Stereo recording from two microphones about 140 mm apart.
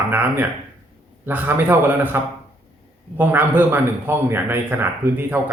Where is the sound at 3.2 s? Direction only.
15° right (ahead or behind).